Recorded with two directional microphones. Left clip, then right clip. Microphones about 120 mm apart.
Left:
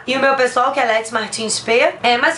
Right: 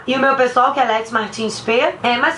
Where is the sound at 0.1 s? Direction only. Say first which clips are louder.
Even; 35° left (ahead or behind).